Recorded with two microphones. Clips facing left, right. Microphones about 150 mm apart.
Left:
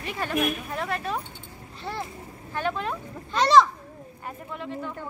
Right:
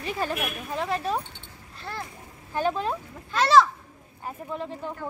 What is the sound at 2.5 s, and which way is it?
Speech, 35° right (ahead or behind).